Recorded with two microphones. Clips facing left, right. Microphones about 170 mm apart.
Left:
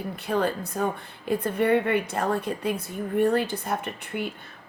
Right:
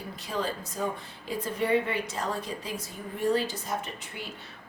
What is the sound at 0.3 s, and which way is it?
A woman's voice, 60° left (ahead or behind).